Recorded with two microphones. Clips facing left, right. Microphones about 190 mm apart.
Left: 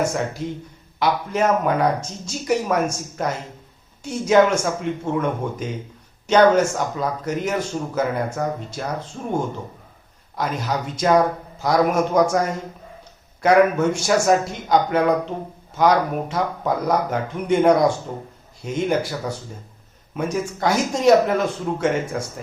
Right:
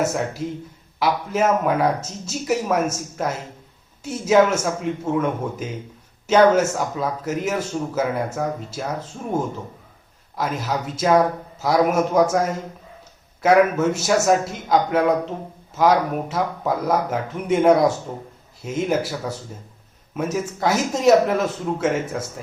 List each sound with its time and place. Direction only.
0.0 s a man's voice: 5° right (ahead or behind)